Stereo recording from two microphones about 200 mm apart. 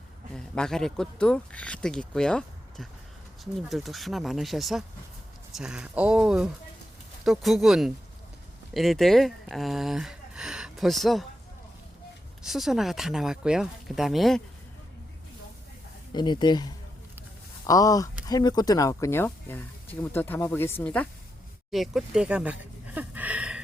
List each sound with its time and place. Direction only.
0.3 s speech: 5° left (ahead or behind)
12.4 s speech: centre (ahead or behind)
16.1 s speech: 20° left (ahead or behind)
21.7 s a sound: centre (ahead or behind)